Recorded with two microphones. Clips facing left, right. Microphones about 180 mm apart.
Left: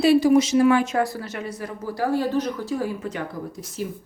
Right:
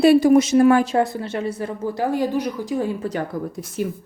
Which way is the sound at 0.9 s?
25° right (ahead or behind).